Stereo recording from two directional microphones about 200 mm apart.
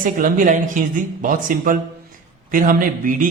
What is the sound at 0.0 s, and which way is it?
A man's voice, 40° right (ahead or behind).